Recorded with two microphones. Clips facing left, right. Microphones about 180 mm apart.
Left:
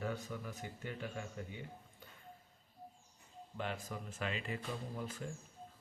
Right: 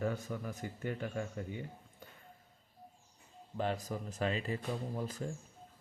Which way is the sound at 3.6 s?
40° right (ahead or behind).